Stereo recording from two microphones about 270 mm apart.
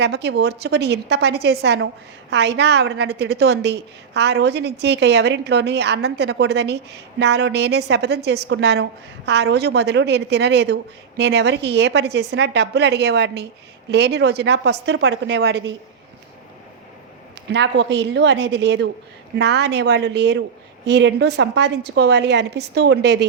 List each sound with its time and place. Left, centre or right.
0.0 s a woman's voice: right
17.5 s a woman's voice: right